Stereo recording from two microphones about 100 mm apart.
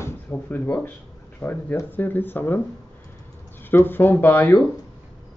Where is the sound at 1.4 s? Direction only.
20° left (ahead or behind).